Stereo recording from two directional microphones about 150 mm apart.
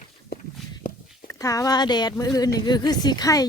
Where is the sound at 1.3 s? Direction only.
20° left (ahead or behind).